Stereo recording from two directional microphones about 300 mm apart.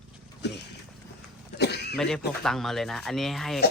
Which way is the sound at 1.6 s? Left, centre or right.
Left.